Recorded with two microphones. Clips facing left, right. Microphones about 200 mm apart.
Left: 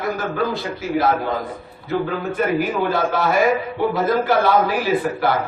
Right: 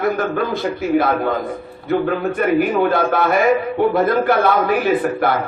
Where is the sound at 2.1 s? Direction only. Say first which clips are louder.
Right 3 dB; 55° right (ahead or behind).